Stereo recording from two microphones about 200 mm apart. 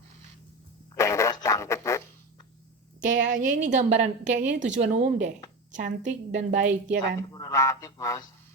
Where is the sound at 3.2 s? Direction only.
40° right (ahead or behind).